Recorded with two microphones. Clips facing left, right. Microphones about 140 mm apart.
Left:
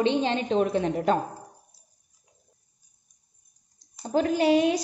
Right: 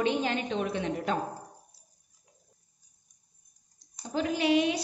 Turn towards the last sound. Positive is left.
turn(degrees=40)  # may be behind; listen again after turning